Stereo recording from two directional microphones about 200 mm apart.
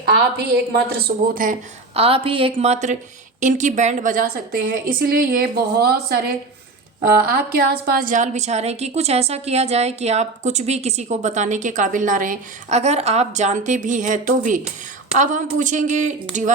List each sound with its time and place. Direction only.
0.0 s a woman's voice: 55° right (ahead or behind)
1.9 s a woman's voice: 30° right (ahead or behind)